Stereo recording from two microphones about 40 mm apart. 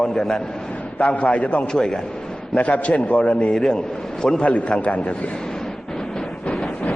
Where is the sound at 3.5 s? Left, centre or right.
Centre.